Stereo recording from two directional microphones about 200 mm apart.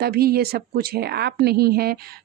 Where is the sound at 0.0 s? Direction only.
50° right (ahead or behind).